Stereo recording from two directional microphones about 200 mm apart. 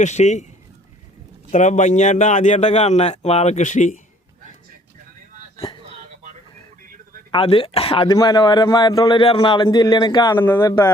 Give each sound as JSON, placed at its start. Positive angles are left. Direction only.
{"t": 0.0, "sound": "a man's voice", "side_deg": 35}
{"t": 1.5, "sound": "a man's voice", "side_deg": 35}
{"t": 7.3, "sound": "speech", "side_deg": 25}
{"t": 8.0, "sound": "a man's voice", "side_deg": 20}
{"t": 10.3, "sound": "speech", "side_deg": 10}